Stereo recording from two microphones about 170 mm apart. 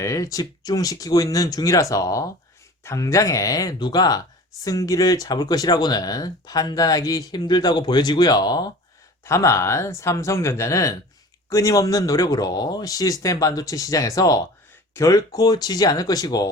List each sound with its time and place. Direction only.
0.0 s speech: 20° left (ahead or behind)